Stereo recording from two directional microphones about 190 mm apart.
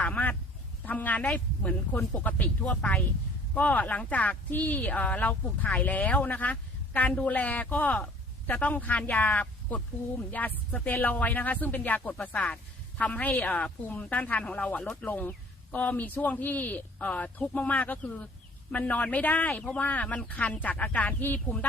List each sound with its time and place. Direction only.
0.0 s duck: 10° left (ahead or behind)
0.9 s speech: 10° left (ahead or behind)